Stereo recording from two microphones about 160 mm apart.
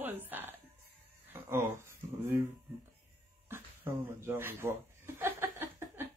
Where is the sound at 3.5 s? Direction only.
15° right (ahead or behind).